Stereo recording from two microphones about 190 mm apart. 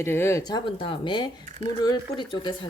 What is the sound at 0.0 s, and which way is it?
Speech, 15° left (ahead or behind).